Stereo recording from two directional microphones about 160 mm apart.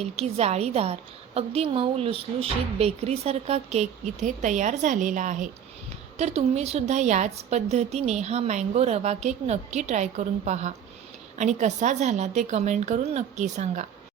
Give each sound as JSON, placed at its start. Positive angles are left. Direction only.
{"t": 0.0, "sound": "a woman's voice", "side_deg": -40}